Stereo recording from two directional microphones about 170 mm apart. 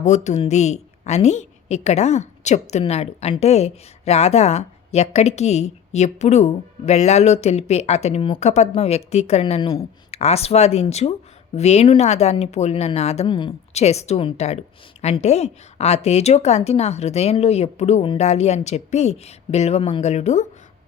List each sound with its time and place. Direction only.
0.0 s a woman's voice: 45° left (ahead or behind)